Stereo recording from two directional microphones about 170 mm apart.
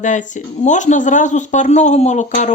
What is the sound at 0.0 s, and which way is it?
Speech, 45° left (ahead or behind).